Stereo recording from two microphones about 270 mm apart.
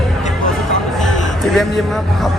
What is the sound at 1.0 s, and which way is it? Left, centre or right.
Speech, centre.